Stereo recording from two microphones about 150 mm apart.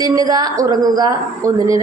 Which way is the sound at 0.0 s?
25° right (ahead or behind).